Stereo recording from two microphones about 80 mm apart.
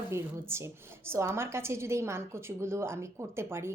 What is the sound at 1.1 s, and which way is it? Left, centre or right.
A woman's voice, right.